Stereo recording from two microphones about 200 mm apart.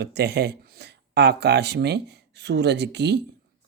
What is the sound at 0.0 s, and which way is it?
Speech, 55° right (ahead or behind).